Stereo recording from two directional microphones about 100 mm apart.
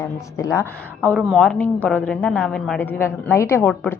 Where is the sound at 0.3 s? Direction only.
30° left (ahead or behind).